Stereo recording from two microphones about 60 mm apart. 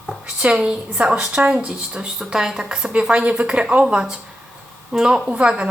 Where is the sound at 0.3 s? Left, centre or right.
Centre.